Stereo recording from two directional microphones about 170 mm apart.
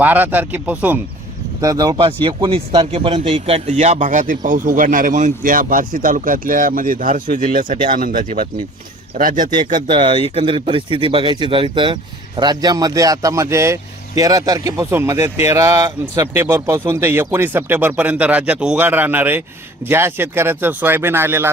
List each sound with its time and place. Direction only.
0.0 s speech: 10° right (ahead or behind)
1.6 s speech: 20° right (ahead or behind); by 9.5 s 50° right (ahead or behind)
9.7 s speech: 30° right (ahead or behind); by 21.5 s 15° right (ahead or behind)